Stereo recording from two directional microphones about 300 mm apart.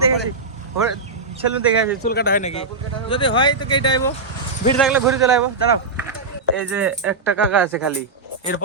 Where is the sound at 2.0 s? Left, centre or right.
Left; by 4.1 s centre.